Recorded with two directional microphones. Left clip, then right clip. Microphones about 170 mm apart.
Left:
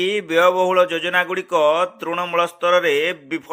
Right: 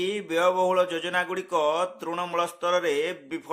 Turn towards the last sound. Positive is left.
turn(degrees=25)  # may be behind; listen again after turning